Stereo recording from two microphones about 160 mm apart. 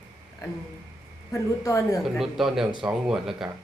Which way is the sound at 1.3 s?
20° left (ahead or behind).